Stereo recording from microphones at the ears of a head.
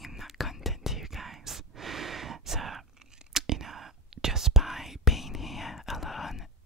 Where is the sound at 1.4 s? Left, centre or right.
Right.